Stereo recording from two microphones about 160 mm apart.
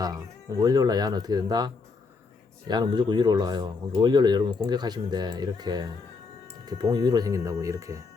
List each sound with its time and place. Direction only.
0.0 s speech: 25° right (ahead or behind)